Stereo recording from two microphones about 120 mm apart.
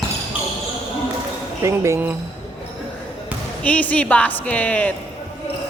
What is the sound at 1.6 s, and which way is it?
Speech, 25° right (ahead or behind).